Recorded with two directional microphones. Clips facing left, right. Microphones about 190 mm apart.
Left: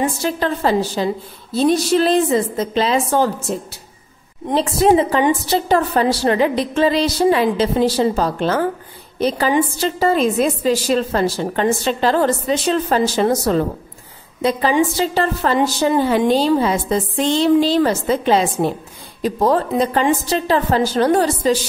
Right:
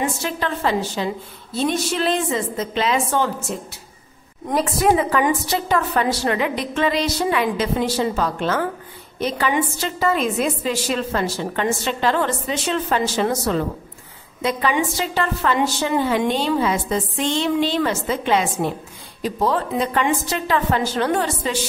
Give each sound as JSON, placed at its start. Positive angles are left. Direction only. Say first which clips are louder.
{"t": 0.0, "sound": "a woman's voice", "louder": "left 4 dB", "side_deg": 35}
{"t": 4.5, "sound": "a woman's voice", "louder": "left 4 dB", "side_deg": 25}